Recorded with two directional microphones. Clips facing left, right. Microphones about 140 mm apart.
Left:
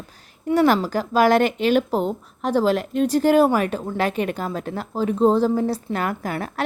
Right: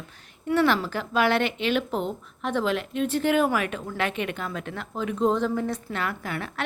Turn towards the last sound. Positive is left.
turn(degrees=40)  # may be behind; listen again after turning